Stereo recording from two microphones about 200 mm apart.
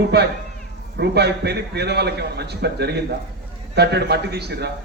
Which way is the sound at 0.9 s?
55° right (ahead or behind).